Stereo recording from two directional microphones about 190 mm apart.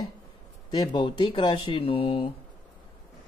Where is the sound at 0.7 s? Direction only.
25° left (ahead or behind).